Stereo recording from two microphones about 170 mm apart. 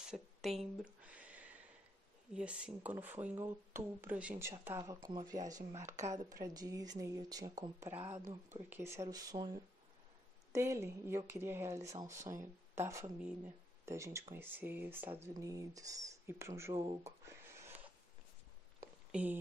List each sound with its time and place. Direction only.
0.0 s a sound: centre (ahead or behind)
2.3 s speech: 5° right (ahead or behind)
19.1 s speech: 5° right (ahead or behind)